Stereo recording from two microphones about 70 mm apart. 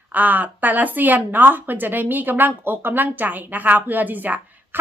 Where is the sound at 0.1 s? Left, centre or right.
Right.